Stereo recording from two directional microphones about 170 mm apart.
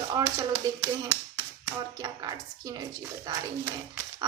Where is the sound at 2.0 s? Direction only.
20° right (ahead or behind).